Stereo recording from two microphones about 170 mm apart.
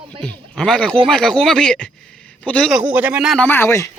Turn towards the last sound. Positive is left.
turn(degrees=15)  # may be behind; listen again after turning